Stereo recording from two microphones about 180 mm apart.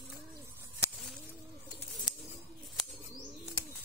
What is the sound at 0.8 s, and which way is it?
Bird, 15° left (ahead or behind).